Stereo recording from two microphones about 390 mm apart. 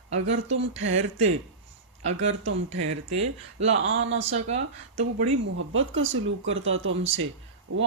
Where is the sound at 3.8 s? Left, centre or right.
Right.